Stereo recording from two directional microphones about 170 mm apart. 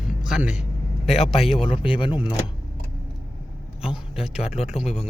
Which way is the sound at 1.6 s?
30° left (ahead or behind).